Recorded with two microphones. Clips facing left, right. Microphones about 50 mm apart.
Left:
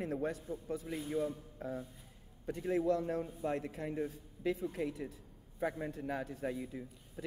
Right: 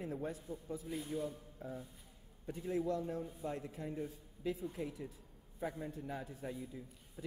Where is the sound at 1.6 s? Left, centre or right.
Left.